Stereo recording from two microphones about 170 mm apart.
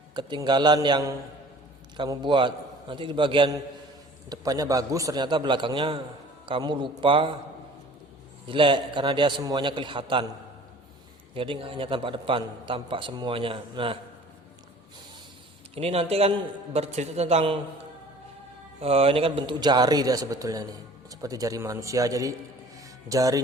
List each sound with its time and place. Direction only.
0.1 s a man's voice: 25° right (ahead or behind)
8.4 s a man's voice: 30° right (ahead or behind)
11.3 s a man's voice: 30° right (ahead or behind)
15.7 s a man's voice: 35° right (ahead or behind)
18.8 s a man's voice: 35° right (ahead or behind); by 23.4 s 20° right (ahead or behind)